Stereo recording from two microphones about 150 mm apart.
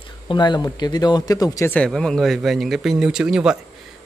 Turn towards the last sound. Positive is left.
turn(degrees=-5)  # may be behind; listen again after turning